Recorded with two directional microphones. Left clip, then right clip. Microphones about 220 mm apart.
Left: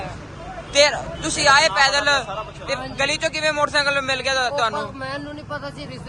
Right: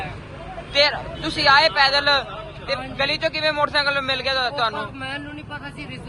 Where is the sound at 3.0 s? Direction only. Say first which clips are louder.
Even; 15° left (ahead or behind).